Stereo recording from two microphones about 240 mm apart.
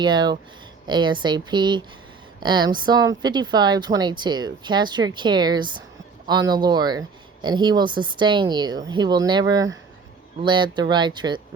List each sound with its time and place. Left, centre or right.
0.0 s speech: centre